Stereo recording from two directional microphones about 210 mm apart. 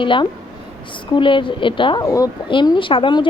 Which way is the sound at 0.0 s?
25° left (ahead or behind).